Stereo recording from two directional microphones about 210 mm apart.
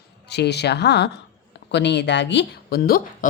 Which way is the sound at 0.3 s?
50° left (ahead or behind).